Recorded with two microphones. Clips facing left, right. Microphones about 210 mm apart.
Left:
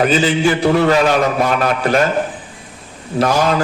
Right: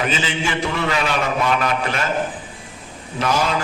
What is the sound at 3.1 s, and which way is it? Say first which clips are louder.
Speech: left 8 dB; 40° left (ahead or behind).